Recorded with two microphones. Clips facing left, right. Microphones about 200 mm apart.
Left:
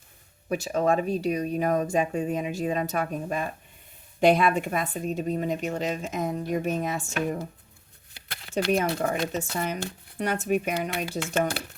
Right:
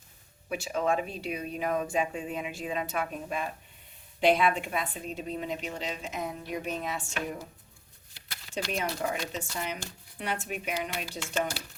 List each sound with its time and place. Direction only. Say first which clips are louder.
0.4 s speech: left 5 dB; 40° left (ahead or behind)
8.1 s speech: left 7 dB; 60° left (ahead or behind)
10.8 s speech: left 6 dB; 60° left (ahead or behind)